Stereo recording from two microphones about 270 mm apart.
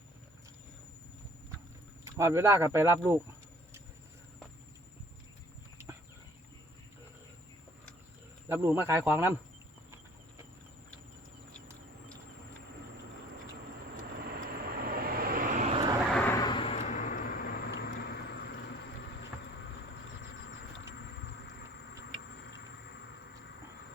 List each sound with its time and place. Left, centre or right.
2.0 s speech: centre
8.4 s speech: centre
14.2 s vehicle: right; by 16.0 s centre
16.1 s vehicle: centre; by 18.5 s left